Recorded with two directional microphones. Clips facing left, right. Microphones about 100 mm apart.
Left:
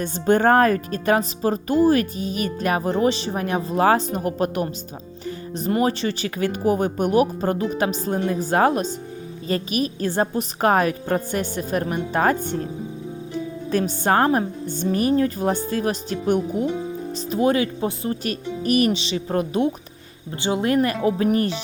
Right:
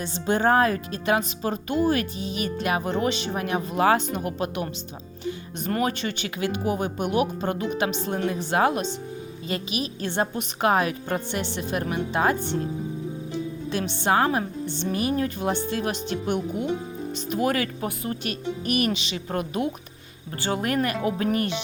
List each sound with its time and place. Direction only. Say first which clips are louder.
0.0 s speech: left 5 dB; 50° left (ahead or behind)
5.8 s speech: left 5 dB; 35° left (ahead or behind)
13.7 s a woman's voice: left 4 dB; 40° left (ahead or behind)
17.3 s speech: left 5 dB; 25° left (ahead or behind)